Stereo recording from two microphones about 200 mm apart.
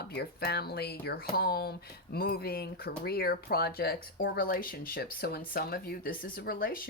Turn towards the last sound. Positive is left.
turn(degrees=45)  # may be behind; listen again after turning